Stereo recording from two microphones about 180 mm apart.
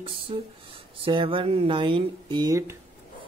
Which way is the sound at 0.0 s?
30° right (ahead or behind).